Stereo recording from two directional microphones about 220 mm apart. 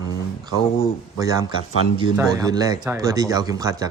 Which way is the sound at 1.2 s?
15° right (ahead or behind).